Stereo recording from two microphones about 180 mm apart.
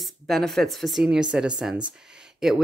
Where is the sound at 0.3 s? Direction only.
Centre (ahead or behind).